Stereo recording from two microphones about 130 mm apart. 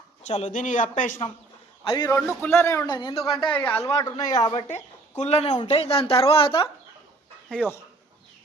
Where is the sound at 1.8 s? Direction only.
35° left (ahead or behind).